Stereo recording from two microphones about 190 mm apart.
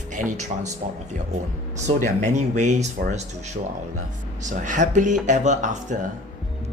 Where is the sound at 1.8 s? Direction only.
40° right (ahead or behind).